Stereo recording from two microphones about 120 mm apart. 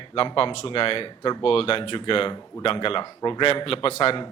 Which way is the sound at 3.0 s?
35° left (ahead or behind).